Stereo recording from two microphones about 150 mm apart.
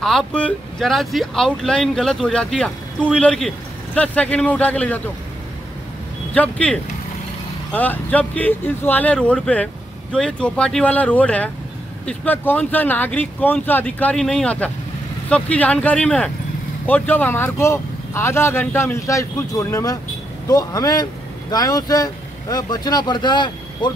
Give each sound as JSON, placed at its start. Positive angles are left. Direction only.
{"t": 0.0, "sound": "speech", "side_deg": 5}
{"t": 6.3, "sound": "speech", "side_deg": 10}